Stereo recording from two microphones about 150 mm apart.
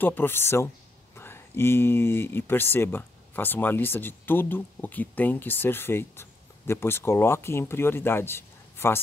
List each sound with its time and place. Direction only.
0.0 s speech: 15° left (ahead or behind)